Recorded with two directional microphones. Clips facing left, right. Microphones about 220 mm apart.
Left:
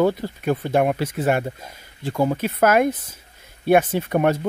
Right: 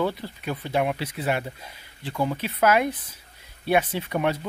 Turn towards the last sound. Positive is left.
turn(degrees=50)  # may be behind; listen again after turning